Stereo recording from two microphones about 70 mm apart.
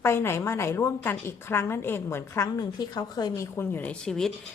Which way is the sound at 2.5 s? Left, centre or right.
Left.